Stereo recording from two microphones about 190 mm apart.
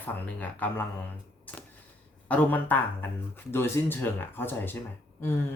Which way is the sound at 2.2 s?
10° left (ahead or behind).